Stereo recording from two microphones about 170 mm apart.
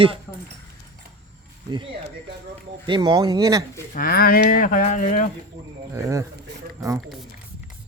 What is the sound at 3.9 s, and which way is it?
Speech, 60° left (ahead or behind).